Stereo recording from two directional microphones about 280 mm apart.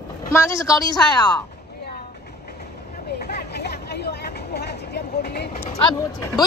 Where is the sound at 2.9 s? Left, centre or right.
Left.